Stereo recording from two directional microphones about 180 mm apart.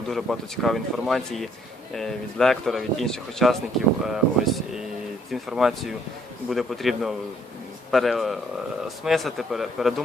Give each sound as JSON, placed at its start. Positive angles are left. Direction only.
{"t": 0.1, "sound": "speech", "side_deg": 0}